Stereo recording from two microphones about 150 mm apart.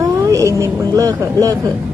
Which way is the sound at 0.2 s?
20° right (ahead or behind).